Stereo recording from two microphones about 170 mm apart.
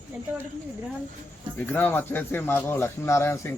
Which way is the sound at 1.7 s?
10° left (ahead or behind).